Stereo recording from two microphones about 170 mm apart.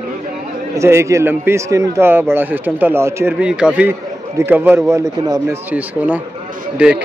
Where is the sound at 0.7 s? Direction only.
15° right (ahead or behind).